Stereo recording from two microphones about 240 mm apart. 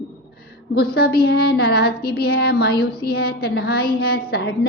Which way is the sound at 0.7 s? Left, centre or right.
Left.